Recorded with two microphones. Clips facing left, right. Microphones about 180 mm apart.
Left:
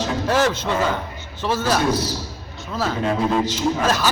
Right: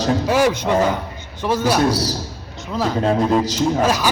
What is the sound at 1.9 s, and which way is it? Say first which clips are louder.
A man's voice: right 1 dB; 35° right (ahead or behind).